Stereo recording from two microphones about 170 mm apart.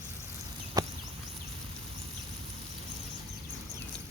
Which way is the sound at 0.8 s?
20° right (ahead or behind).